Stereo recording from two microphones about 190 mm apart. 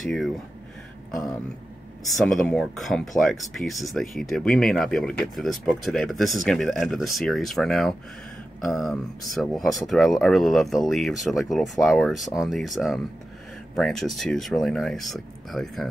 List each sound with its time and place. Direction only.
0.0 s speech: centre (ahead or behind)
2.2 s speech: 5° left (ahead or behind)